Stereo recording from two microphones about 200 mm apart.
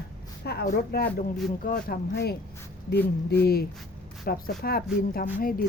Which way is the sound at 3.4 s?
50° left (ahead or behind).